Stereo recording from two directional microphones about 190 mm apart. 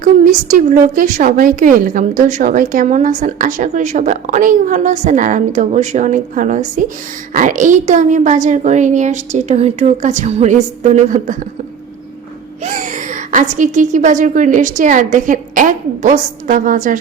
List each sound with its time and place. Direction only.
0.0 s a woman's voice: 45° right (ahead or behind)
12.6 s a woman's voice: 40° right (ahead or behind)